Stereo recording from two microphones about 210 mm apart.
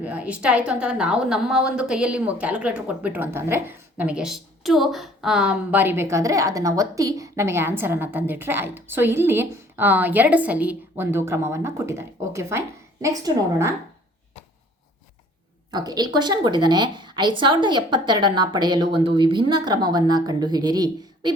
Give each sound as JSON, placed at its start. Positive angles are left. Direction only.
{"t": 0.0, "sound": "a woman's voice", "side_deg": -5}
{"t": 15.7, "sound": "a woman's voice", "side_deg": -20}